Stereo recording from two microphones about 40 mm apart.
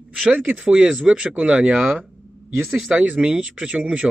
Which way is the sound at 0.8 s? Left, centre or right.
Right.